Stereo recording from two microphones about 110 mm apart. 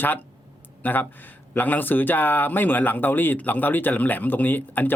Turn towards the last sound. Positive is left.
turn(degrees=15)  # may be behind; listen again after turning